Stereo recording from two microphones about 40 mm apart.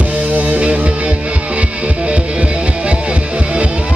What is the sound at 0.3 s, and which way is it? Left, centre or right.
Music, right.